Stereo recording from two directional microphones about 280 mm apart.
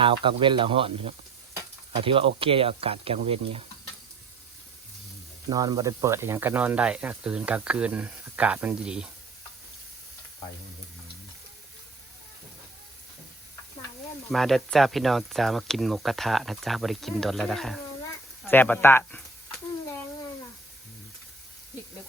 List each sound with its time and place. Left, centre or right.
0.0 s speech: centre
5.5 s speech: centre
14.3 s speech: centre